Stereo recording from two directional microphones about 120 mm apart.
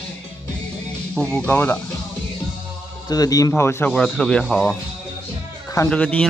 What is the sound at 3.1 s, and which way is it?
Speech, 30° left (ahead or behind).